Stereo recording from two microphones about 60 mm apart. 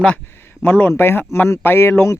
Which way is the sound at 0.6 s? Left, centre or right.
Left.